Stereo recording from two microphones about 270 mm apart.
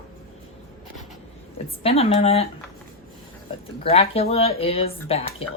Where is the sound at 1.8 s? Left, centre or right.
Left.